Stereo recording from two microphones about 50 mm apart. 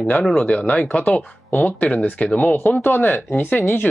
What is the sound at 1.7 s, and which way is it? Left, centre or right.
Speech, left.